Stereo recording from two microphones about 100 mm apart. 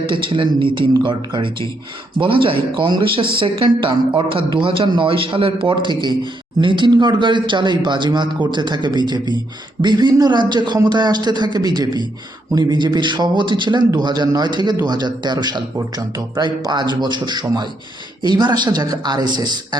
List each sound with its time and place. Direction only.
0.1 s a man's voice: 55° right (ahead or behind)
2.2 s a man's voice: 60° right (ahead or behind)